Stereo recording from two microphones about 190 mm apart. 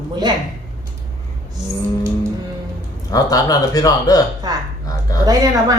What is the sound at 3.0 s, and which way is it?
Speech, 20° left (ahead or behind).